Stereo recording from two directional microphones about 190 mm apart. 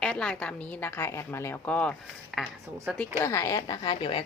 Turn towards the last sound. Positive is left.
turn(degrees=25)  # may be behind; listen again after turning